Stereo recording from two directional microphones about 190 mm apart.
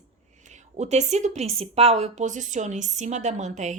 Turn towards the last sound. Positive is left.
turn(degrees=-40)  # may be behind; listen again after turning